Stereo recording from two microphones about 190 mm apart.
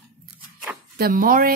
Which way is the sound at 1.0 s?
45° right (ahead or behind).